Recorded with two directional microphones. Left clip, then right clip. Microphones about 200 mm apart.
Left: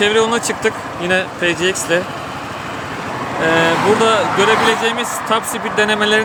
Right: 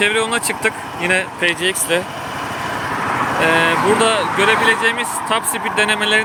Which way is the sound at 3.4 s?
10° left (ahead or behind).